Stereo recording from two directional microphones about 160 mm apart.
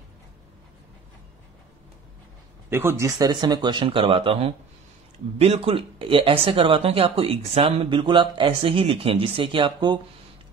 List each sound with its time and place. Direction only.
2.7 s speech: 15° right (ahead or behind)